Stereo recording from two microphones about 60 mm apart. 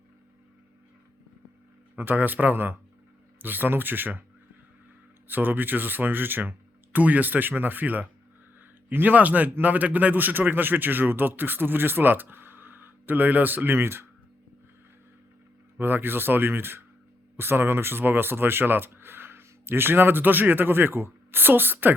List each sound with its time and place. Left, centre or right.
2.0 s speech: right
5.3 s speech: right
15.8 s speech: right